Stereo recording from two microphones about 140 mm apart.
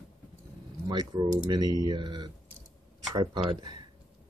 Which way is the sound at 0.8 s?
30° right (ahead or behind).